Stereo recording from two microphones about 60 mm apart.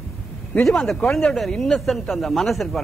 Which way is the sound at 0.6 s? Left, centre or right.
Centre.